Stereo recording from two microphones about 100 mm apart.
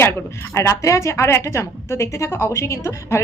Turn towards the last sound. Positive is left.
turn(degrees=30)  # may be behind; listen again after turning